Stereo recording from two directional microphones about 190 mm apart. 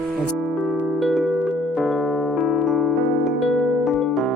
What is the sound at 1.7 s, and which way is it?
Keyboard, centre (ahead or behind).